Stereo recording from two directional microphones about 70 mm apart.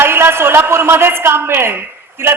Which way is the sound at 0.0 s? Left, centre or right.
Right.